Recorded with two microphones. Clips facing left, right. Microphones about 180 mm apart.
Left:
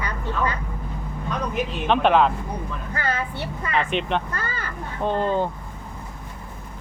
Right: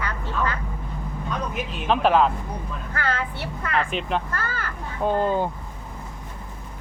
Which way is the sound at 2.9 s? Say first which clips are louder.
Even; 10° left (ahead or behind).